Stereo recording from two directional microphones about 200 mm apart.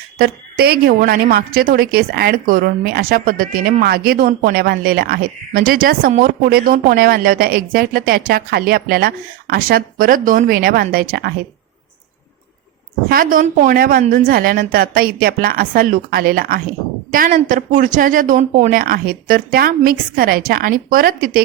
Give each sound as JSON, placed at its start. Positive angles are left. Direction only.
{"t": 0.2, "sound": "a woman's voice", "side_deg": -50}
{"t": 13.1, "sound": "a woman's voice", "side_deg": -45}